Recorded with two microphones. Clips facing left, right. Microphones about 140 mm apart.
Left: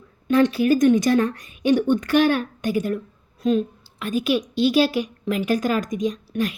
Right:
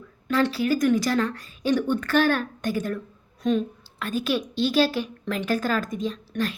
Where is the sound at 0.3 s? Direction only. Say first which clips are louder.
Left 5 dB; 20° left (ahead or behind).